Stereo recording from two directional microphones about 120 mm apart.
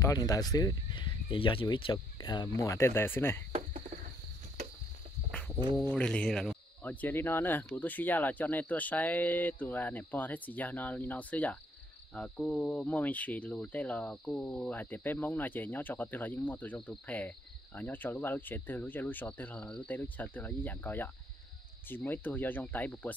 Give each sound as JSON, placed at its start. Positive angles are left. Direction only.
{"t": 0.0, "sound": "speech", "side_deg": 30}
{"t": 0.9, "sound": "speech", "side_deg": 45}
{"t": 5.3, "sound": "a sound", "side_deg": 10}
{"t": 5.8, "sound": "speech", "side_deg": 5}
{"t": 6.8, "sound": "speech", "side_deg": 15}